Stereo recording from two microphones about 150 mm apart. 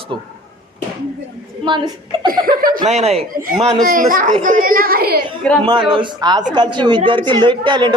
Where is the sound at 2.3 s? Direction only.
70° right (ahead or behind).